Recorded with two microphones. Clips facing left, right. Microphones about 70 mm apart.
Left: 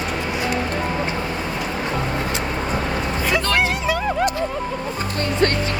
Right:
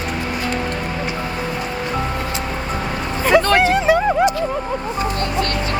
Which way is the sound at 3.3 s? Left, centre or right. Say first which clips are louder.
Right 8 dB; right.